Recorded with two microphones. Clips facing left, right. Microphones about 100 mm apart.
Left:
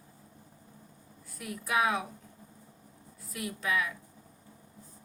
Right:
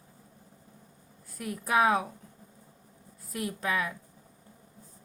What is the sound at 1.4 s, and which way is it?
Speech, 40° right (ahead or behind).